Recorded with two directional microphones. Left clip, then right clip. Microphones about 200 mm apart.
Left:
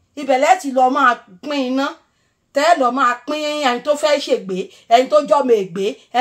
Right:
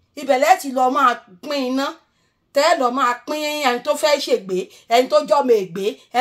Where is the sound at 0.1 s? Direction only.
45° right (ahead or behind).